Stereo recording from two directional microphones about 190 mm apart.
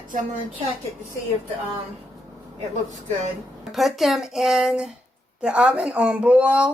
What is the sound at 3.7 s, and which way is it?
Speech, centre (ahead or behind).